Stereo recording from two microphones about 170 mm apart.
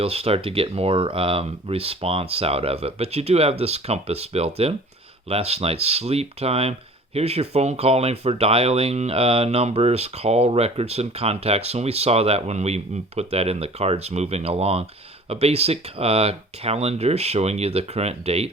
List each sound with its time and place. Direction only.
0.0 s speech: 35° right (ahead or behind)